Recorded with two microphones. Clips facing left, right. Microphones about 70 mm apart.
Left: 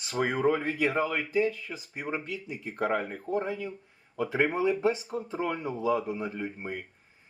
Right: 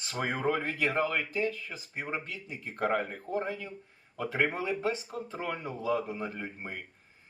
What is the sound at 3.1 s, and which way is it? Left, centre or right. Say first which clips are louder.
Speech: left 4 dB; left.